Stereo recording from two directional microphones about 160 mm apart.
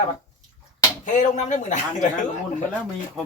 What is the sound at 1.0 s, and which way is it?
Speech, 50° left (ahead or behind).